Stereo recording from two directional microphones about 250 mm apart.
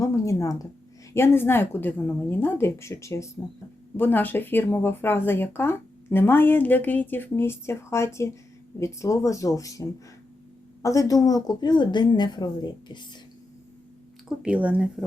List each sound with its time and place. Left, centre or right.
0.0 s speech: centre
10.8 s speech: centre
14.3 s speech: centre